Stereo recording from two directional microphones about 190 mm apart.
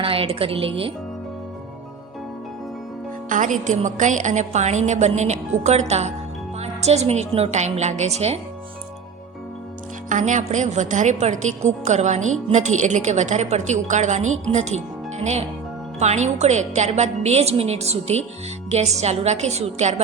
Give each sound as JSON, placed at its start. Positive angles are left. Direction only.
{"t": 0.0, "sound": "speech", "side_deg": -30}
{"t": 3.2, "sound": "a woman's voice", "side_deg": -40}
{"t": 10.1, "sound": "a woman's voice", "side_deg": -40}